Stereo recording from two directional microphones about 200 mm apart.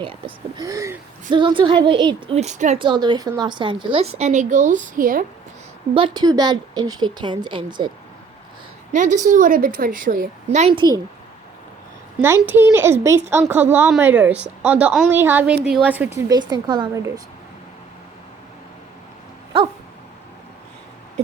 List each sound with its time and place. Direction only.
0.0 s a woman's voice: 25° right (ahead or behind)
2.8 s a woman's voice: 20° right (ahead or behind); by 5.2 s 45° right (ahead or behind)
5.9 s a woman's voice: 25° right (ahead or behind)
8.9 s a woman's voice: 40° right (ahead or behind); by 11.0 s 20° right (ahead or behind)
12.2 s a woman's voice: 10° right (ahead or behind)
16.1 s a woman's voice: 20° right (ahead or behind)